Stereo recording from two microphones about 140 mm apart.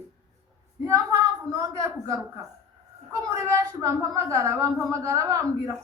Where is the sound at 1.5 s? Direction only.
25° right (ahead or behind).